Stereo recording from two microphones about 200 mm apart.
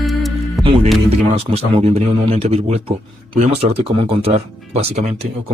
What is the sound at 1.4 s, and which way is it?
Speech, 30° right (ahead or behind).